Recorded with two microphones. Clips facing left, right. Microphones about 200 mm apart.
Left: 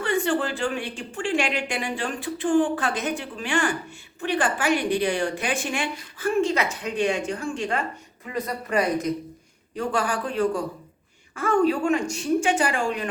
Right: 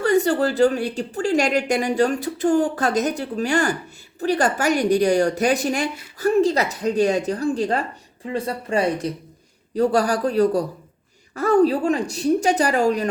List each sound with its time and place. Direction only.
0.0 s a woman's voice: 40° right (ahead or behind)